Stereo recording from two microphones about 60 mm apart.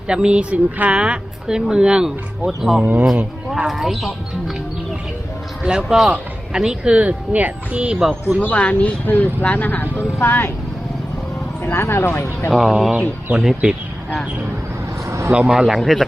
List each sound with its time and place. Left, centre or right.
0.1 s a woman's voice: centre
2.8 s speech: right
3.7 s speech: centre
5.6 s a woman's voice: centre
8.5 s speech: left
11.6 s speech: left
12.5 s a woman's voice: centre
15.0 s a sound: right
15.3 s speech: centre